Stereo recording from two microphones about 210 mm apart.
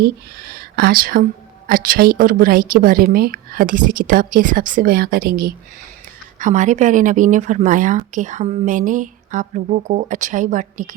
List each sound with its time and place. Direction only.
0.0 s a woman's voice: 45° right (ahead or behind)